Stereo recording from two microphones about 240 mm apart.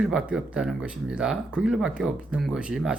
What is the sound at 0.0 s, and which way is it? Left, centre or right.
Speech, centre.